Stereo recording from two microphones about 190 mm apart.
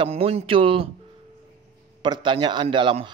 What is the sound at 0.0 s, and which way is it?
Speech, 30° right (ahead or behind).